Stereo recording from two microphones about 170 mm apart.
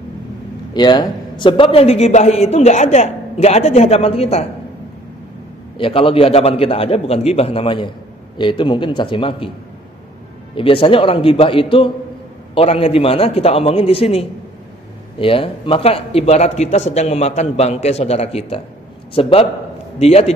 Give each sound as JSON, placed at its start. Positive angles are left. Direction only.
{"t": 0.7, "sound": "a man's voice", "side_deg": 25}
{"t": 5.8, "sound": "a man's voice", "side_deg": 30}
{"t": 10.5, "sound": "a man's voice", "side_deg": 30}